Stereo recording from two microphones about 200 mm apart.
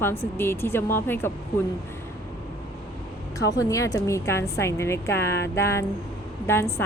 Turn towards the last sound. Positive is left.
turn(degrees=10)  # may be behind; listen again after turning